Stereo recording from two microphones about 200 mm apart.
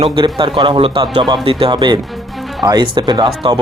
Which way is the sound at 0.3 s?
25° right (ahead or behind).